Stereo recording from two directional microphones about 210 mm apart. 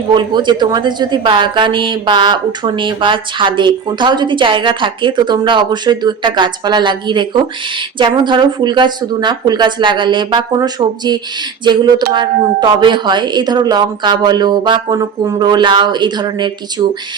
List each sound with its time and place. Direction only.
0.1 s a woman's voice: 20° right (ahead or behind)